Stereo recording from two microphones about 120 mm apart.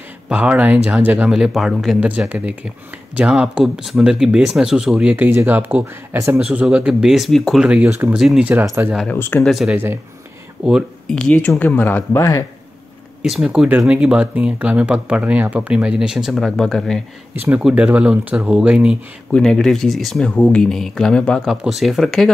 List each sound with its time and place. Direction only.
0.3 s speech: 10° right (ahead or behind)
6.3 s speech: 10° right (ahead or behind)
9.1 s speech: 15° left (ahead or behind)
9.4 s speech: centre (ahead or behind)
11.1 s speech: 10° left (ahead or behind)
12.2 s speech: 25° left (ahead or behind)
13.2 s speech: 5° right (ahead or behind)
17.4 s speech: 10° right (ahead or behind)
19.3 s speech: 5° left (ahead or behind)